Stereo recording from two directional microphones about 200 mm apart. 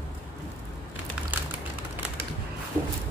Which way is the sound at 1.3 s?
10° right (ahead or behind).